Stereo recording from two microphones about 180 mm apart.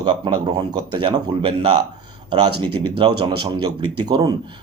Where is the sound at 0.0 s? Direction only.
25° right (ahead or behind).